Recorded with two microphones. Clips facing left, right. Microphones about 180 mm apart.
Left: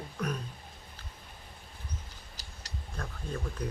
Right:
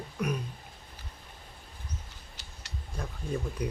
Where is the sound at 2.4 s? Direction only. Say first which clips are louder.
Even; 35° left (ahead or behind).